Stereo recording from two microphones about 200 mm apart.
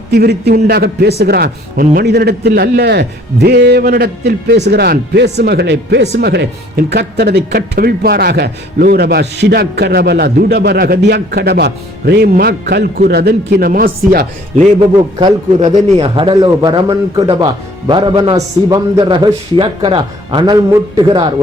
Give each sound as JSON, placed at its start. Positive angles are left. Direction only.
{"t": 0.1, "sound": "speech", "side_deg": -55}
{"t": 14.9, "sound": "a man's voice", "side_deg": -25}